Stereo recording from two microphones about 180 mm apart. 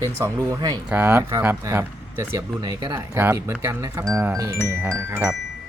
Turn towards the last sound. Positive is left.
turn(degrees=-10)  # may be behind; listen again after turning